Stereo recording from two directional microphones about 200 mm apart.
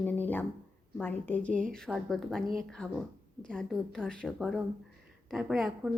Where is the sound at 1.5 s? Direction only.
40° right (ahead or behind).